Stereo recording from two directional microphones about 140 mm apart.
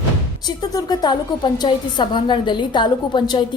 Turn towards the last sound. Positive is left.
turn(degrees=35)  # may be behind; listen again after turning